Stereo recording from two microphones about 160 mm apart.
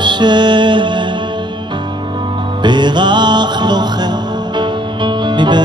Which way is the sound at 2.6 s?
30° right (ahead or behind).